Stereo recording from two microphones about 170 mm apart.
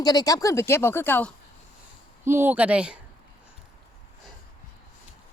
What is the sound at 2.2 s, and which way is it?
Speech, 15° right (ahead or behind).